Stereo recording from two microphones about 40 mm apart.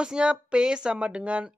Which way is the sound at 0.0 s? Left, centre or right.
Right.